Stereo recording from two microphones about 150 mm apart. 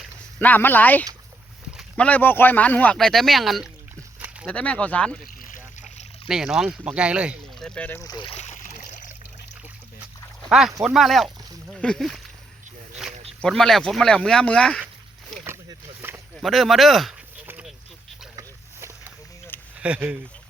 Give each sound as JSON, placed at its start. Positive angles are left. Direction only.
{"t": 0.3, "sound": "speech", "side_deg": 10}
{"t": 5.2, "sound": "a sound", "side_deg": 65}
{"t": 6.2, "sound": "speech", "side_deg": -5}
{"t": 7.6, "sound": "speech", "side_deg": 5}
{"t": 8.0, "sound": "speech", "side_deg": 30}
{"t": 8.4, "sound": "a sound", "side_deg": 55}
{"t": 10.5, "sound": "speech", "side_deg": -5}
{"t": 13.4, "sound": "speech", "side_deg": 5}
{"t": 15.4, "sound": "a sound", "side_deg": -15}
{"t": 16.3, "sound": "speech", "side_deg": 0}
{"t": 17.4, "sound": "a sound", "side_deg": -15}
{"t": 19.8, "sound": "speech", "side_deg": -10}